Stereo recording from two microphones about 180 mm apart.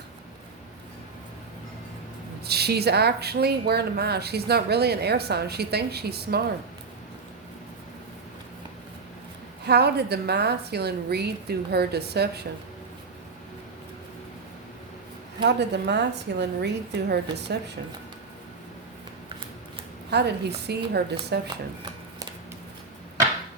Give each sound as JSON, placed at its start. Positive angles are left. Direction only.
{"t": 2.4, "sound": "speech", "side_deg": -65}
{"t": 9.6, "sound": "speech", "side_deg": -65}
{"t": 15.4, "sound": "a woman's voice", "side_deg": -70}
{"t": 20.1, "sound": "a woman's voice", "side_deg": -70}